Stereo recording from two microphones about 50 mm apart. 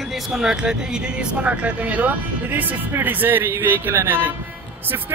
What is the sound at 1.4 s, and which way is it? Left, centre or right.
Speech, right.